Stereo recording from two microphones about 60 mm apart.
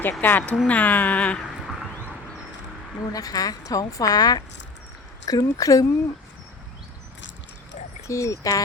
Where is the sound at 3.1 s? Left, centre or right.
Left.